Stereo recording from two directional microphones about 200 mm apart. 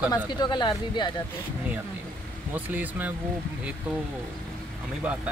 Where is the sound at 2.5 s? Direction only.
10° right (ahead or behind).